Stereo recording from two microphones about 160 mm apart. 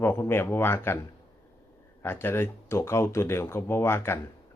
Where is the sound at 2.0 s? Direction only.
15° left (ahead or behind).